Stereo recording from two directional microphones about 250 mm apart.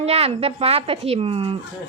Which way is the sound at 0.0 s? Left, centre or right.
Right.